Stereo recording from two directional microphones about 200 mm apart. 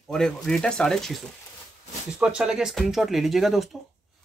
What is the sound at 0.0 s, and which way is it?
Speech, centre (ahead or behind).